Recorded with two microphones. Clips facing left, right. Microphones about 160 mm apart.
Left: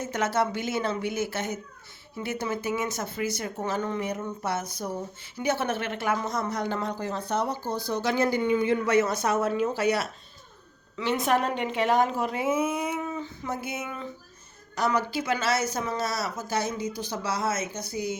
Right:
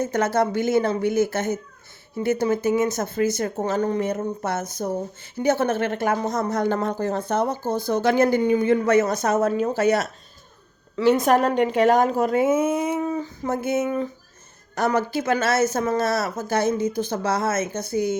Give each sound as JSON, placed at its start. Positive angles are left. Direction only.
{"t": 0.0, "sound": "a woman's voice", "side_deg": -45}